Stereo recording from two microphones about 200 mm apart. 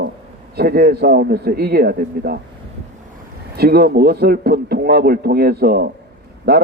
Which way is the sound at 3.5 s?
50° right (ahead or behind).